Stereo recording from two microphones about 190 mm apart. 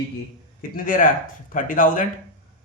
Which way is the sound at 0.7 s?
45° left (ahead or behind).